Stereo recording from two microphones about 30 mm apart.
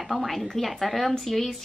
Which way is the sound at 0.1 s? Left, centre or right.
Centre.